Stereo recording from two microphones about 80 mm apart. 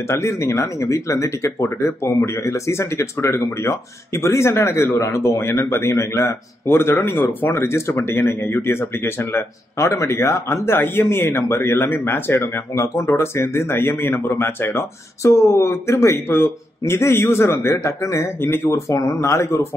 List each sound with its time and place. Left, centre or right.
0.1 s speech: left